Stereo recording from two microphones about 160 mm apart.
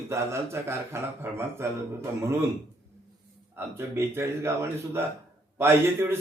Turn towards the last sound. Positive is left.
turn(degrees=-15)  # may be behind; listen again after turning